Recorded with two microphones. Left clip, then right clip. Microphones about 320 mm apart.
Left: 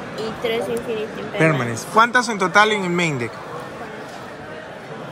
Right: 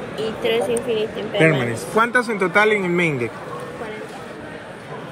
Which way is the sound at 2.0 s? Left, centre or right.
Centre.